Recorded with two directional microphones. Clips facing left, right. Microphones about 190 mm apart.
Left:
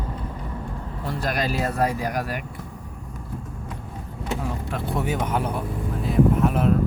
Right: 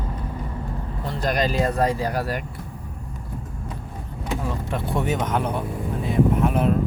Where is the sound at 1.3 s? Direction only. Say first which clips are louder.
Right 4 dB; 5° left (ahead or behind).